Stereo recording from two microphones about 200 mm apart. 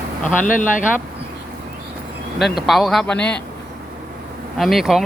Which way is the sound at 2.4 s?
Centre (ahead or behind).